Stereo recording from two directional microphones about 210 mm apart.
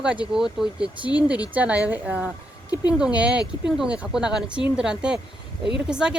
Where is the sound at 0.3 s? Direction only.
5° right (ahead or behind).